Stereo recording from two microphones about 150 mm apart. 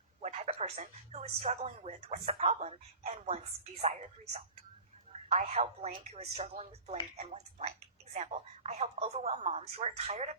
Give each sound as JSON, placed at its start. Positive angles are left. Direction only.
{"t": 0.2, "sound": "a woman's voice", "side_deg": -50}